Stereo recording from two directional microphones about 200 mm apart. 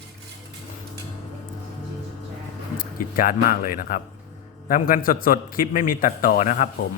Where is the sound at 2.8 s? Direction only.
45° left (ahead or behind).